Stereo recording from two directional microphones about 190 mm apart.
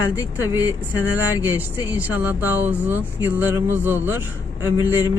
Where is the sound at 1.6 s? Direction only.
10° right (ahead or behind).